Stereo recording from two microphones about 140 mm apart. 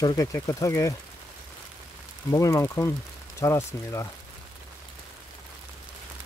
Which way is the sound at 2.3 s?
25° left (ahead or behind).